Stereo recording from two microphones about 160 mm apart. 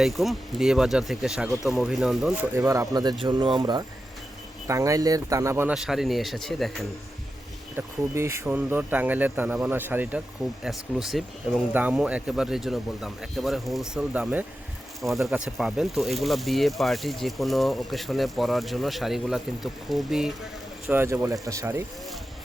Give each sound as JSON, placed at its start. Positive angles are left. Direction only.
{"t": 0.0, "sound": "speech", "side_deg": 0}
{"t": 2.6, "sound": "speech", "side_deg": -20}
{"t": 5.7, "sound": "speech", "side_deg": 0}
{"t": 7.8, "sound": "speech", "side_deg": -15}
{"t": 20.8, "sound": "speech", "side_deg": -15}